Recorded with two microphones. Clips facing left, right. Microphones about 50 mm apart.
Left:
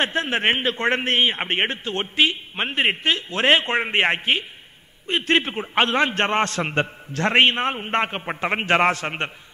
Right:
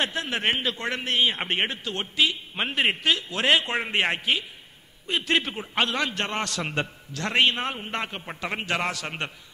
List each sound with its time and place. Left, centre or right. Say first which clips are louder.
0.0 s a man's voice: left 5 dB; left